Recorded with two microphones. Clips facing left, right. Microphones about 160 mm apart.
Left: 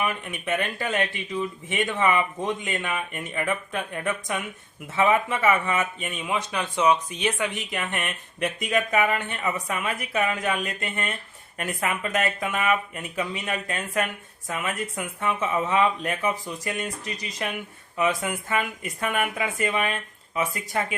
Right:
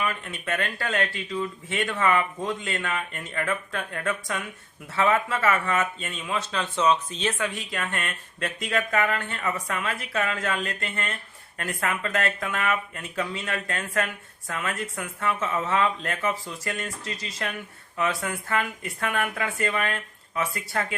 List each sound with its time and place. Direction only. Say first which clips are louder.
0.0 s speech: left 2 dB; 15° left (ahead or behind)